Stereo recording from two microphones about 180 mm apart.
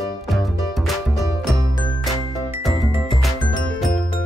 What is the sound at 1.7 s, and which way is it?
Music, 25° left (ahead or behind).